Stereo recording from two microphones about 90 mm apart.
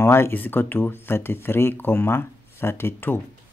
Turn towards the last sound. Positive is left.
turn(degrees=25)  # may be behind; listen again after turning